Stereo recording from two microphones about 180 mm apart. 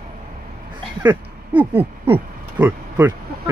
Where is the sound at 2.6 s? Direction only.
10° right (ahead or behind).